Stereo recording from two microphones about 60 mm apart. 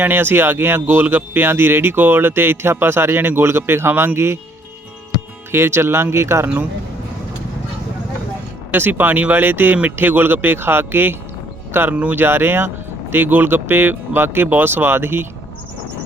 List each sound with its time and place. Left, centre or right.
0.0 s speech: right
5.5 s speech: right
8.7 s speech: right
11.9 s speech: right